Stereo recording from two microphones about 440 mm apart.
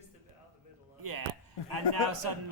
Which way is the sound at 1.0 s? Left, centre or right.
Right.